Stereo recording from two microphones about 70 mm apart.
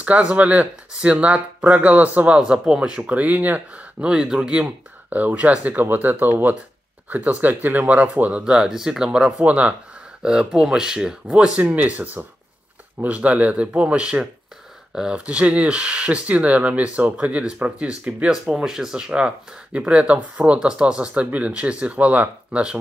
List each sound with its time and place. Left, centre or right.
0.0 s speech: right